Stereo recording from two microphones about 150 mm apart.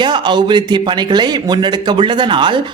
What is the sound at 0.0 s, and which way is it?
A man's voice, 30° right (ahead or behind).